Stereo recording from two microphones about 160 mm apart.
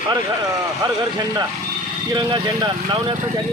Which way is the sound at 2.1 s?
30° right (ahead or behind).